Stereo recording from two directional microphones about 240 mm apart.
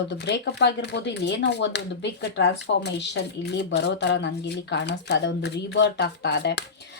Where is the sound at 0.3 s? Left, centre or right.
Left.